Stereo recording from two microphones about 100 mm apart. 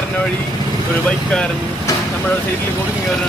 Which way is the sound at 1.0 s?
10° left (ahead or behind).